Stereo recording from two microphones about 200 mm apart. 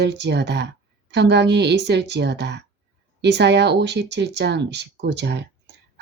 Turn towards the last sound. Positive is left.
turn(degrees=-55)  # may be behind; listen again after turning